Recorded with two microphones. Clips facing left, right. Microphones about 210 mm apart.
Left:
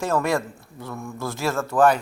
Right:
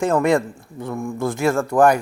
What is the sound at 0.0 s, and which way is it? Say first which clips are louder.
Speech: right 5 dB; 15° right (ahead or behind).